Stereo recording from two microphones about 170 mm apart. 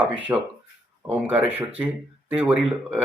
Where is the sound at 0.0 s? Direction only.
10° right (ahead or behind).